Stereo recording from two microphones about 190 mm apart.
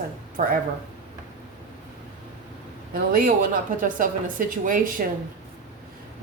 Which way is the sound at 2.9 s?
50° right (ahead or behind).